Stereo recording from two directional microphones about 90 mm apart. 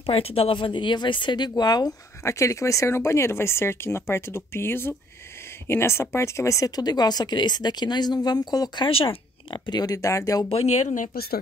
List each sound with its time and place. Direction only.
0.0 s speech: 90° left; by 1.5 s 60° left (ahead or behind)
1.6 s speech: 50° left (ahead or behind)
2.2 s speech: 35° left (ahead or behind); by 8.9 s 55° left (ahead or behind)
8.9 s speech: 85° left; by 9.9 s 55° left (ahead or behind)
9.9 s speech: 35° left (ahead or behind)